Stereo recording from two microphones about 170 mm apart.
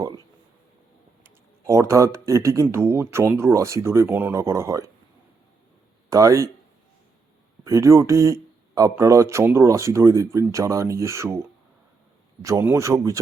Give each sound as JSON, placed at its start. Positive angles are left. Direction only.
{"t": 1.2, "sound": "speech", "side_deg": -15}
{"t": 6.1, "sound": "speech", "side_deg": -20}
{"t": 7.6, "sound": "speech", "side_deg": -20}
{"t": 12.4, "sound": "speech", "side_deg": -15}